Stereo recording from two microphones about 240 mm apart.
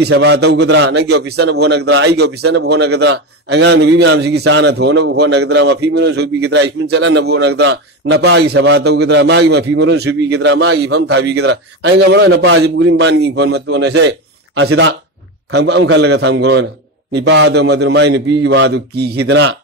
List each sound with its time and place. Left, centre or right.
0.0 s a man's voice: right